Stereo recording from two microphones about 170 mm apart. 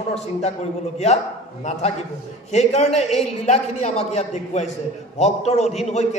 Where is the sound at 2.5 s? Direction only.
40° left (ahead or behind).